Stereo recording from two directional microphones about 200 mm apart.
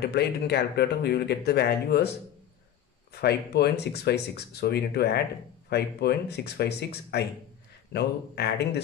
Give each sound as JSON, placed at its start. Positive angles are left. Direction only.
{"t": 0.0, "sound": "speech", "side_deg": 55}